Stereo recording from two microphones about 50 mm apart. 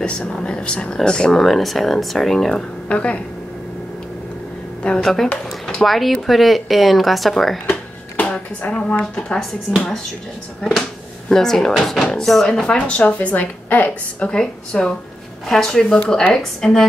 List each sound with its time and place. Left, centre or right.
0.0 s speech: centre
1.4 s speech: centre
2.5 s speech: left
5.0 s speech: centre
7.6 s a sound: left
8.6 s a woman's voice: left
9.8 s speech: centre
12.7 s a woman's voice: left
14.4 s speech: centre
15.4 s speech: centre